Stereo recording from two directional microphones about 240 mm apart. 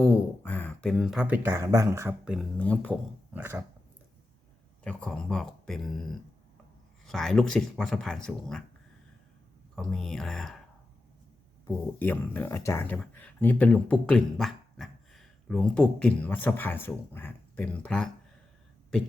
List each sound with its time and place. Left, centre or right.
0.0 s speech: centre
3.3 s dog: centre
4.8 s speech: centre
9.7 s speech: centre
11.9 s speech: centre